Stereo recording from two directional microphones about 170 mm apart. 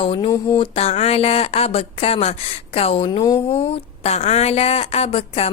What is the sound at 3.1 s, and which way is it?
Speech, 25° left (ahead or behind).